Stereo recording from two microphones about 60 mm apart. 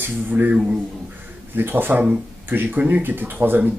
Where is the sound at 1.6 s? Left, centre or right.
Right.